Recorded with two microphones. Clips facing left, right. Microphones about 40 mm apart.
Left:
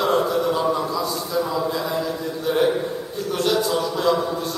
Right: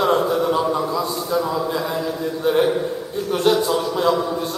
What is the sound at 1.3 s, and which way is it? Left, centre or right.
Speech, centre.